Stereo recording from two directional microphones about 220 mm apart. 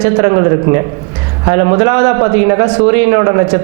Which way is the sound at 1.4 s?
20° right (ahead or behind).